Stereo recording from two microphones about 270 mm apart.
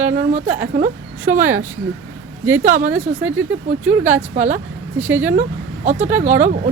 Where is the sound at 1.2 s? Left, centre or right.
Centre.